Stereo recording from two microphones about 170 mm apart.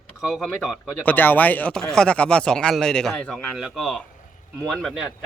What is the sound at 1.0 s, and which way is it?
Speech, 10° left (ahead or behind).